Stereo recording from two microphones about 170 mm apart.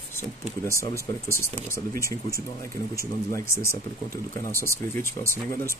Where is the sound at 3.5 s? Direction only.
15° left (ahead or behind).